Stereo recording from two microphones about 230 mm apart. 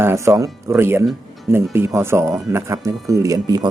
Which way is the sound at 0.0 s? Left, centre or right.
Centre.